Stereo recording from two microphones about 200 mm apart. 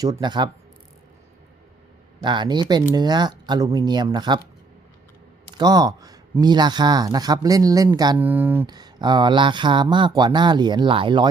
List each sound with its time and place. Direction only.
0.0 s speech: 20° right (ahead or behind)
2.2 s speech: 25° right (ahead or behind)
5.5 s speech: 20° right (ahead or behind)
8.2 s speech: 10° right (ahead or behind)
8.6 s speech: 20° right (ahead or behind)